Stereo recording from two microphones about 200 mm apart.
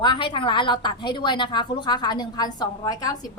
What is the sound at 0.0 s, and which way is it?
A woman's voice, 25° left (ahead or behind).